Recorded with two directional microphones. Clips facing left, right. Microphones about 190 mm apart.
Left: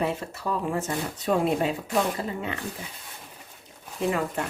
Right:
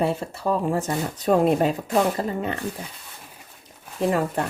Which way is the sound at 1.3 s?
45° right (ahead or behind).